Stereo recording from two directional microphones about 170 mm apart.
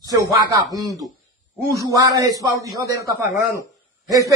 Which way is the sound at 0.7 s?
20° right (ahead or behind).